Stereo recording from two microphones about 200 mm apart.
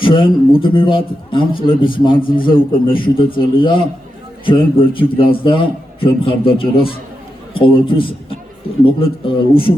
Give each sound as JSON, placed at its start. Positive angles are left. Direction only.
{"t": 0.0, "sound": "a man's voice", "side_deg": 25}